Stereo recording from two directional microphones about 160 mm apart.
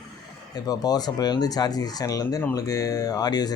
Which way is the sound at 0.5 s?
25° left (ahead or behind).